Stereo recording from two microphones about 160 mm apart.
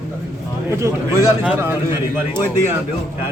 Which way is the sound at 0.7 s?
20° right (ahead or behind).